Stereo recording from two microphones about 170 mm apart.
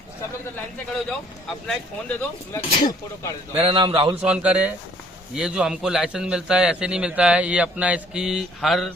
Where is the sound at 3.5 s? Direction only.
35° right (ahead or behind).